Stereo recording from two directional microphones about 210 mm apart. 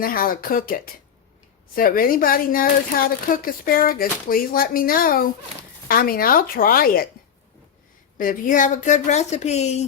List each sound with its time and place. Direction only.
0.0 s speech: 45° left (ahead or behind)
8.2 s speech: 40° left (ahead or behind)